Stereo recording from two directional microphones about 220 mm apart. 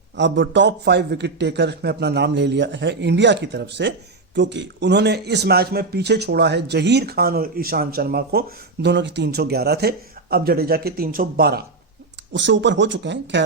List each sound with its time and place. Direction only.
0.2 s a man's voice: 55° right (ahead or behind)